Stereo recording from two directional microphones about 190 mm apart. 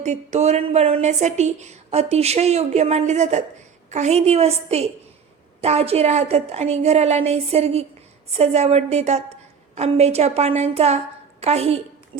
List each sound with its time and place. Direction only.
0.0 s a woman's voice: 35° right (ahead or behind)